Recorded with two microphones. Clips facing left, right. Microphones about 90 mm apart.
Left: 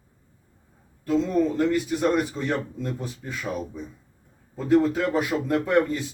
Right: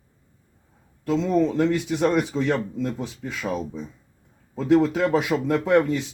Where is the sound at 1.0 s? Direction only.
90° right.